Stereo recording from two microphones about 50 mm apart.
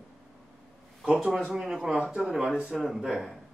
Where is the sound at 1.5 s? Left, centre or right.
Centre.